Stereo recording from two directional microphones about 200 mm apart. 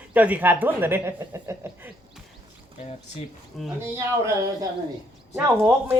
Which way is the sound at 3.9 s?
15° right (ahead or behind).